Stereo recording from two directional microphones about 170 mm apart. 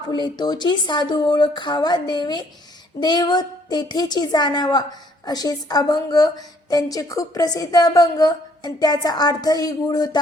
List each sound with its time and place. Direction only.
0.1 s a woman's voice: 25° left (ahead or behind)